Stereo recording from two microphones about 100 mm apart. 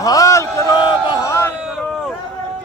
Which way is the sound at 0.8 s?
45° left (ahead or behind).